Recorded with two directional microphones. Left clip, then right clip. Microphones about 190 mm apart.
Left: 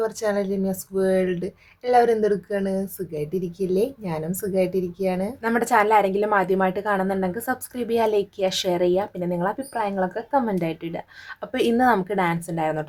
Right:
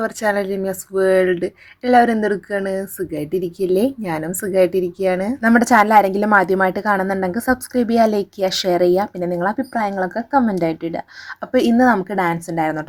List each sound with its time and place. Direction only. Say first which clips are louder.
0.0 s speech: right 4 dB; 30° right (ahead or behind)